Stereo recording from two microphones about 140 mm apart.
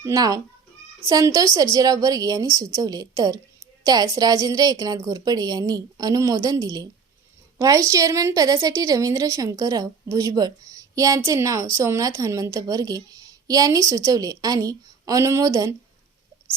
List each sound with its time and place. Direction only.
0.0 s a woman's voice: 25° right (ahead or behind)